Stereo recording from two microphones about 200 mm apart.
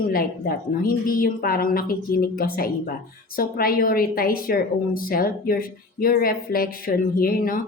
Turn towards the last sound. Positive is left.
turn(degrees=45)  # may be behind; listen again after turning